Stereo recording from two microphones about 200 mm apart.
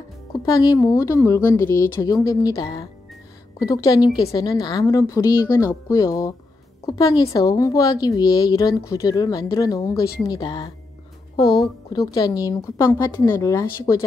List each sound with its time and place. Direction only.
0.5 s a woman's voice: 20° left (ahead or behind)